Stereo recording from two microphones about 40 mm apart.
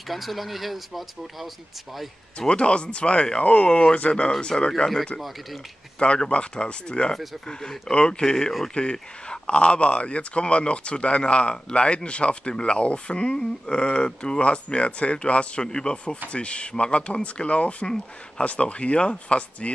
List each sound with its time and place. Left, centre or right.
0.1 s speech: centre
2.3 s speech: left
5.9 s speech: left